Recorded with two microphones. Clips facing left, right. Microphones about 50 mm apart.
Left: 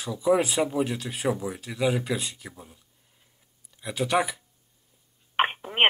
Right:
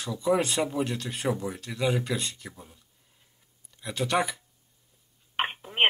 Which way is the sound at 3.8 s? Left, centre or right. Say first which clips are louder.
Left 2 dB; centre.